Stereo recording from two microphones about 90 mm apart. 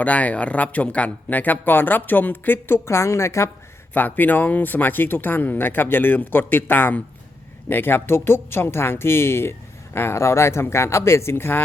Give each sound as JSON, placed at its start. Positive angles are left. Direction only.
{"t": 0.0, "sound": "speech", "side_deg": 15}
{"t": 3.9, "sound": "speech", "side_deg": 20}